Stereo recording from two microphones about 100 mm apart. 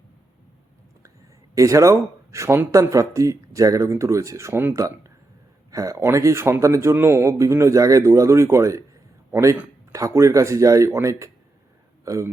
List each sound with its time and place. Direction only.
1.5 s speech: 30° right (ahead or behind)